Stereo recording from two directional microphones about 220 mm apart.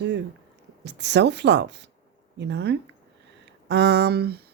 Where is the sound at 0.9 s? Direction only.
50° right (ahead or behind).